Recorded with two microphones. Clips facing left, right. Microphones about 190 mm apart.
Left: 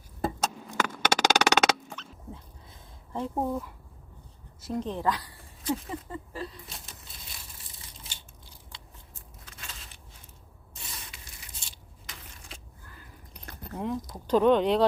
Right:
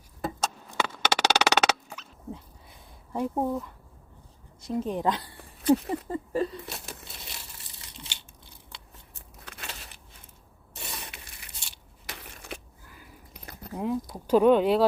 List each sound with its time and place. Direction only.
0.3 s a sound: 10° left (ahead or behind)
0.9 s music: 10° left (ahead or behind)
1.5 s fowl: 10° right (ahead or behind)
4.6 s speech: centre (ahead or behind)
4.9 s speech: 20° right (ahead or behind)
5.6 s patter: 65° right (ahead or behind)
6.1 s a sound: 40° right (ahead or behind)
6.7 s crumpling: 70° right (ahead or behind)
8.7 s scissors: 70° right (ahead or behind)
10.8 s spray: 65° right (ahead or behind)
11.6 s scissors: 70° right (ahead or behind)
12.9 s a sound: 10° right (ahead or behind)